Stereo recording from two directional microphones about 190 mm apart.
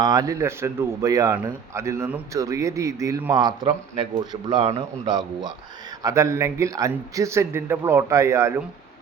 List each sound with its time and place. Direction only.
0.0 s speech: 20° right (ahead or behind)